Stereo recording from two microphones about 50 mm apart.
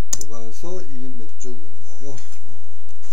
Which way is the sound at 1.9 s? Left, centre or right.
Centre.